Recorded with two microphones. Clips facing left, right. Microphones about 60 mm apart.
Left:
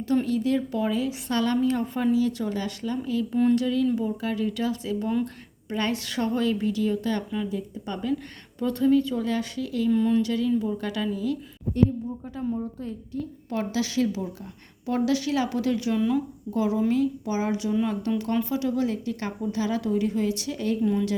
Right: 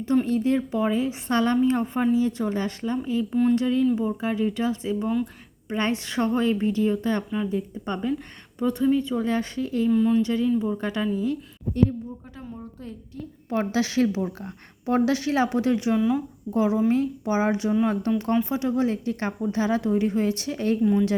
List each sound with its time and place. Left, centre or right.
0.3 s a woman's voice: right
5.0 s speech: centre
5.7 s a woman's voice: right
8.5 s a woman's voice: centre
9.9 s speech: centre
10.2 s a woman's voice: right
13.5 s a woman's voice: right
16.0 s speech: centre
16.5 s a woman's voice: right